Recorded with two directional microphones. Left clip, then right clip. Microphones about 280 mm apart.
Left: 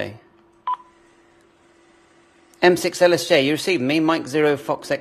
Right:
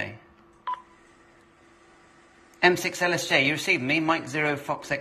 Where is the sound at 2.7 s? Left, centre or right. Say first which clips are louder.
Left 9 dB; left.